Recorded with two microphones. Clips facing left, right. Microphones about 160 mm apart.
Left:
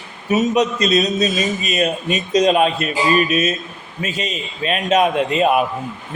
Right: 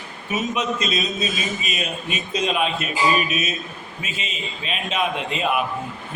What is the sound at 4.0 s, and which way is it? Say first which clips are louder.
A man's voice: left 8 dB; 45° left (ahead or behind).